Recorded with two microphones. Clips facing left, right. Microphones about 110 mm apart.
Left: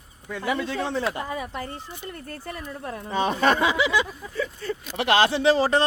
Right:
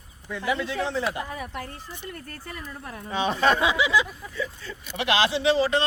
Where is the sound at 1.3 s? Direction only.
25° left (ahead or behind).